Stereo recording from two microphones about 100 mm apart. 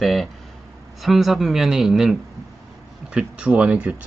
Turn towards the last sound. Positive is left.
turn(degrees=-15)  # may be behind; listen again after turning